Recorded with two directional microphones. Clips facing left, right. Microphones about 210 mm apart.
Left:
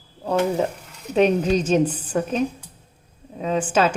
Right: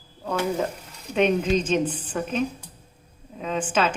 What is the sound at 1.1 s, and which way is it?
A woman's voice, 40° left (ahead or behind).